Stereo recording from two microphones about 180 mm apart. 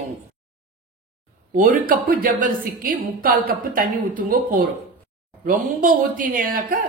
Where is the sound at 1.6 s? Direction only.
50° right (ahead or behind).